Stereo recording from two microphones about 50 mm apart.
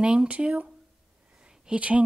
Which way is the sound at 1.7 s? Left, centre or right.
Right.